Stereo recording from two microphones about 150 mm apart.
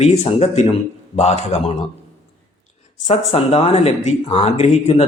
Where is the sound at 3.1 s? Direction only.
45° left (ahead or behind).